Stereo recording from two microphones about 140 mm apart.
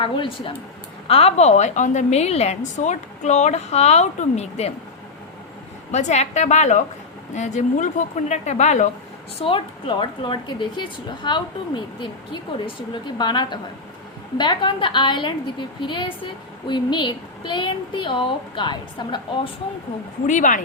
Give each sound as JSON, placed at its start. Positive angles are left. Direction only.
{"t": 0.0, "sound": "a woman's voice", "side_deg": 35}
{"t": 5.9, "sound": "a woman's voice", "side_deg": 55}
{"t": 9.4, "sound": "a woman's voice", "side_deg": 40}
{"t": 20.2, "sound": "a woman's voice", "side_deg": 65}